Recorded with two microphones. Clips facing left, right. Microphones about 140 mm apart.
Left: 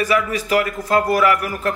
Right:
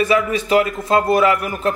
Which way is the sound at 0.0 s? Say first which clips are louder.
Right 2 dB; 25° right (ahead or behind).